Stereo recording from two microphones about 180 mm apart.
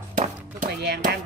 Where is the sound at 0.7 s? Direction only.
65° right (ahead or behind).